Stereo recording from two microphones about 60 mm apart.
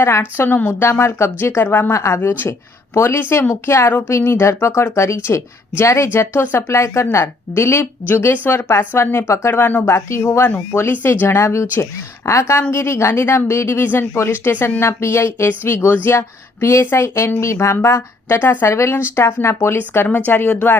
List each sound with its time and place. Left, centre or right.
0.0 s speech: left
0.9 s speech: left
1.9 s speech: left
3.2 s speech: left
6.1 s speech: left
9.1 s speech: left
9.6 s speech: left
9.9 s speech: left
10.9 s speech: left
13.8 s speech: left
14.8 s speech: left
20.1 s speech: left